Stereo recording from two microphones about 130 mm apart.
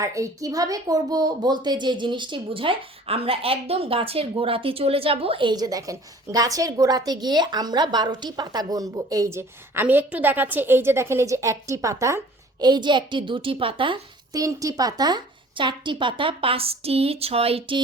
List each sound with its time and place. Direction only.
0.0 s a woman's voice: 25° right (ahead or behind); by 14.0 s 40° right (ahead or behind)
14.3 s a woman's voice: 25° right (ahead or behind); by 17.7 s 50° right (ahead or behind)